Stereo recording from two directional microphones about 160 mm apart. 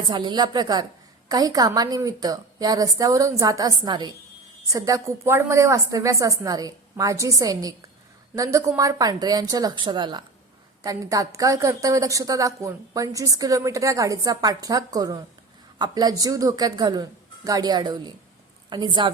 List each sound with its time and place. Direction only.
0.1 s a woman's voice: 25° right (ahead or behind)